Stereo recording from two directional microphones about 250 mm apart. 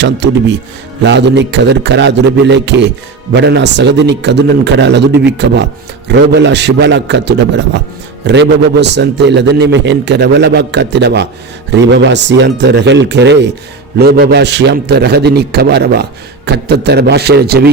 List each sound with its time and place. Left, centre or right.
0.0 s a man's voice: right